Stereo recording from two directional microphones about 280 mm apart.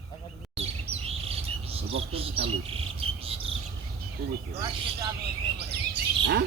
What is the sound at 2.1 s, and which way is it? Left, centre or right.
Bird, centre.